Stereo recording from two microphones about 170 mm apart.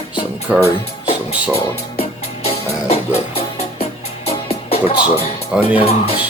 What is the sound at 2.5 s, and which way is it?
Music, 35° left (ahead or behind).